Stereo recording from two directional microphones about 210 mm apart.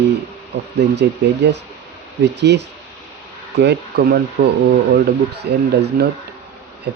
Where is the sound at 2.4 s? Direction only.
55° right (ahead or behind).